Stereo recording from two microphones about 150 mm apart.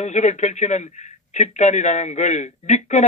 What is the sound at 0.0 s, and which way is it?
A man's voice, 50° left (ahead or behind).